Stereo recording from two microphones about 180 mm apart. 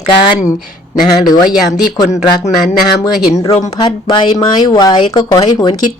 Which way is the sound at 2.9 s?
25° left (ahead or behind).